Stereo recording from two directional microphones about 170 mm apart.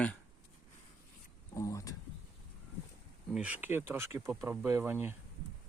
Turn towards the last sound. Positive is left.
turn(degrees=-10)  # may be behind; listen again after turning